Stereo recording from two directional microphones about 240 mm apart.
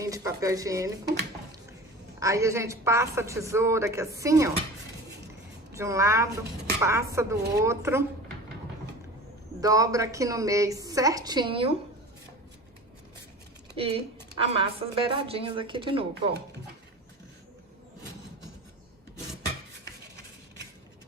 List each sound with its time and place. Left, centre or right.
0.0 s a woman's voice: centre
2.1 s a woman's voice: centre
5.7 s a woman's voice: centre
9.6 s a woman's voice: centre
13.7 s a woman's voice: right